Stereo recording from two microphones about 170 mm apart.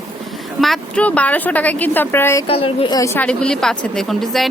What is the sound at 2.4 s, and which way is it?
Speech, 35° left (ahead or behind).